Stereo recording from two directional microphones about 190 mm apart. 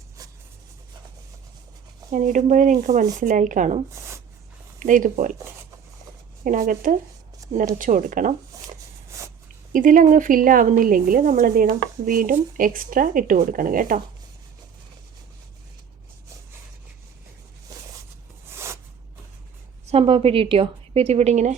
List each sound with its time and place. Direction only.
2.0 s a woman's voice: 40° right (ahead or behind)
6.4 s a woman's voice: 45° right (ahead or behind)
9.0 s a sound: 15° right (ahead or behind)
9.7 s a woman's voice: 45° right (ahead or behind)
17.7 s walk: 20° right (ahead or behind)
18.5 s zipper: 15° right (ahead or behind)
19.9 s a woman's voice: 30° right (ahead or behind)